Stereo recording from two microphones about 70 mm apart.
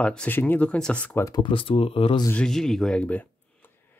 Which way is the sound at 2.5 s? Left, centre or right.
Centre.